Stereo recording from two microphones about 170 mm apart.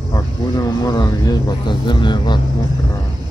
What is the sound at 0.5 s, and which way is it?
A man's voice, 20° left (ahead or behind).